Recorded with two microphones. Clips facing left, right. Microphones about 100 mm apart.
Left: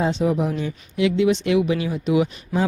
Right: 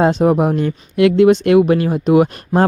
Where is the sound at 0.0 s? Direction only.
50° right (ahead or behind).